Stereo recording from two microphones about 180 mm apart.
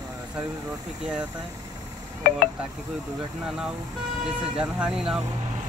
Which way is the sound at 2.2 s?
55° left (ahead or behind).